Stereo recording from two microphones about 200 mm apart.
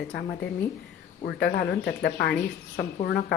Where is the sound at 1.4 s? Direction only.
55° left (ahead or behind).